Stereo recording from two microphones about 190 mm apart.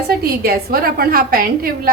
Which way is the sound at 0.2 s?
50° right (ahead or behind).